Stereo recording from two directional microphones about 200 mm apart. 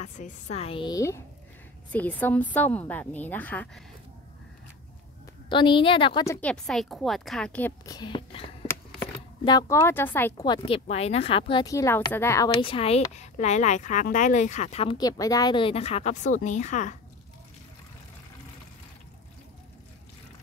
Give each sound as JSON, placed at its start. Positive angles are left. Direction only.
{"t": 0.0, "sound": "a woman's voice", "side_deg": 35}
{"t": 5.5, "sound": "a woman's voice", "side_deg": 25}
{"t": 7.8, "sound": "speech", "side_deg": 20}
{"t": 9.4, "sound": "a woman's voice", "side_deg": 20}
{"t": 10.4, "sound": "speech", "side_deg": 25}
{"t": 12.4, "sound": "speech", "side_deg": 25}